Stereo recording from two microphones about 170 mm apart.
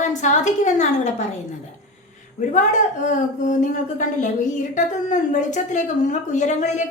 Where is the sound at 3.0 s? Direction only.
45° left (ahead or behind).